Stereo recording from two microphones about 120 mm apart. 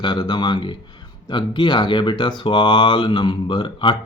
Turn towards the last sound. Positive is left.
turn(degrees=40)  # may be behind; listen again after turning